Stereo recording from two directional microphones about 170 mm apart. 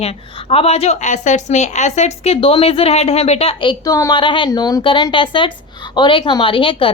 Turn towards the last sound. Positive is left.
turn(degrees=30)  # may be behind; listen again after turning